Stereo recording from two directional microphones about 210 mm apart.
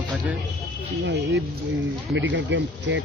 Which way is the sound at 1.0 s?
55° right (ahead or behind).